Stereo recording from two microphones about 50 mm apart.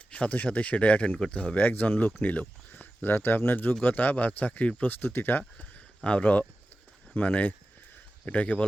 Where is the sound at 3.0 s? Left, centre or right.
Left.